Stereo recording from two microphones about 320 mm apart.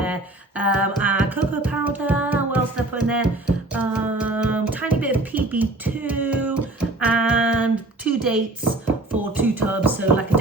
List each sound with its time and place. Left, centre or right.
0.0 s music: centre
9.4 s music: centre